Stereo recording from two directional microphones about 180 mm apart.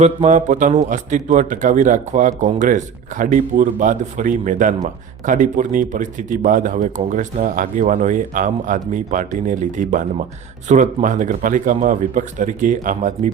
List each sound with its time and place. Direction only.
0.0 s speech: 40° right (ahead or behind)